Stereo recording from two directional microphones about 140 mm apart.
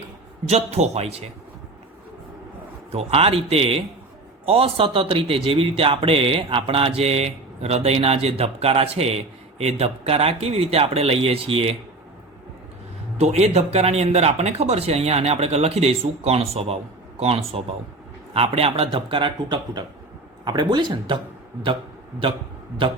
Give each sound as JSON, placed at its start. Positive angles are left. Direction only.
{"t": 0.4, "sound": "speech", "side_deg": -50}
{"t": 2.9, "sound": "speech", "side_deg": -45}
{"t": 13.1, "sound": "speech", "side_deg": -50}